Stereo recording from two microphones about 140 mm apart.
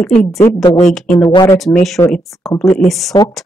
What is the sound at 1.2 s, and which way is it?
Speech, 30° left (ahead or behind).